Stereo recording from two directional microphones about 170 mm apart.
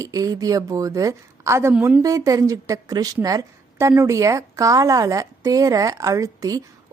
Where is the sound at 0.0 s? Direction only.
20° right (ahead or behind).